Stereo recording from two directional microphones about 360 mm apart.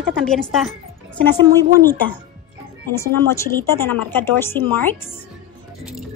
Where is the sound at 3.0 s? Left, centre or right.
Centre.